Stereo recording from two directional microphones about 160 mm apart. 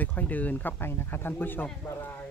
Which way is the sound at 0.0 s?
10° left (ahead or behind).